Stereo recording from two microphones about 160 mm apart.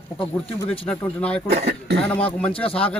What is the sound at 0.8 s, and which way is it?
Speech, 5° left (ahead or behind).